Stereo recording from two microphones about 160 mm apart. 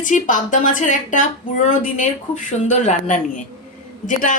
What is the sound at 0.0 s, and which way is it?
A woman's voice, 55° left (ahead or behind).